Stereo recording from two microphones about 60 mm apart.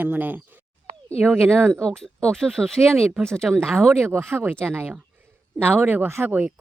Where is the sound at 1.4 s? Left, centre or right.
Centre.